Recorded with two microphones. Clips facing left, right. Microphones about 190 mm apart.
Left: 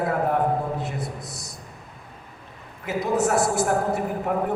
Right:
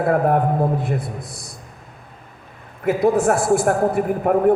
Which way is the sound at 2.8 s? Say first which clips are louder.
Right 6 dB; 55° right (ahead or behind).